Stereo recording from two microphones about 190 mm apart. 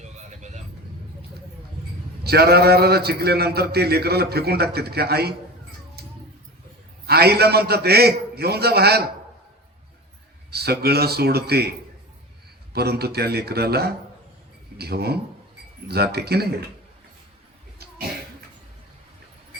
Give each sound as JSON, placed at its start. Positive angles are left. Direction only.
{"t": 0.0, "sound": "vehicle", "side_deg": -35}
{"t": 2.2, "sound": "a man's voice", "side_deg": -55}
{"t": 6.0, "sound": "a sound", "side_deg": -55}
{"t": 7.1, "sound": "a man's voice", "side_deg": -55}
{"t": 10.5, "sound": "a man's voice", "side_deg": -55}
{"t": 12.7, "sound": "a man's voice", "side_deg": -55}